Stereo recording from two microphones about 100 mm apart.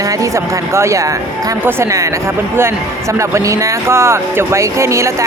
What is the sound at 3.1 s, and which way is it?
Speech, 30° right (ahead or behind).